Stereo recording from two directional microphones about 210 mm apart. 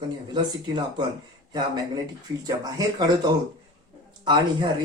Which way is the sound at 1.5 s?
20° right (ahead or behind).